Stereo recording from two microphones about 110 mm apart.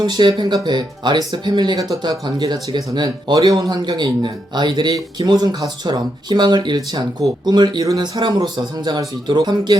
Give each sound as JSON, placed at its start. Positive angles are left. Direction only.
{"t": 0.0, "sound": "speech", "side_deg": -45}